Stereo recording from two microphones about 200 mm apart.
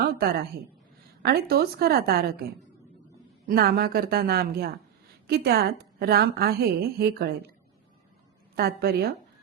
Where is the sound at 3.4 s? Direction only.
50° right (ahead or behind).